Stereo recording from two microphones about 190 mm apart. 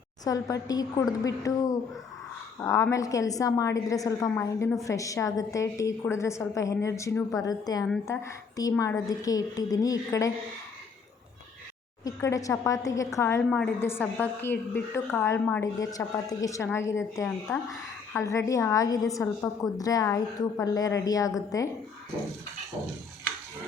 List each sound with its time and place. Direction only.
0.3 s a woman's voice: 20° left (ahead or behind)
12.0 s a woman's voice: 15° left (ahead or behind)